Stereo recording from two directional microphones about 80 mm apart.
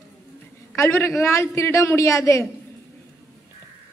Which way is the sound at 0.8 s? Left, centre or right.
Left.